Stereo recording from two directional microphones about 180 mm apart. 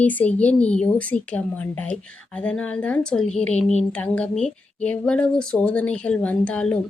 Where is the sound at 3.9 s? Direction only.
5° left (ahead or behind).